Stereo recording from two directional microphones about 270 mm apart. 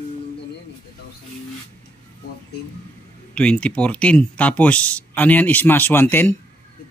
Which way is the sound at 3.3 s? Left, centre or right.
Centre.